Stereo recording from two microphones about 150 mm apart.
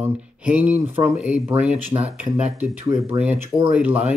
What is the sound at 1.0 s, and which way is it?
Speech, 35° right (ahead or behind).